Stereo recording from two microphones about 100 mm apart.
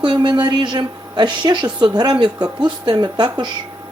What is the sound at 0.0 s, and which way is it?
A woman's voice, 50° right (ahead or behind).